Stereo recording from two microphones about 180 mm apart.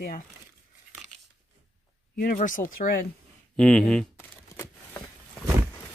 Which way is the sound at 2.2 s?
50° left (ahead or behind).